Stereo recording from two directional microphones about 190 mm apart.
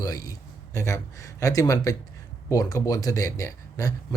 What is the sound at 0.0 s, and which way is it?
Speech, 20° left (ahead or behind).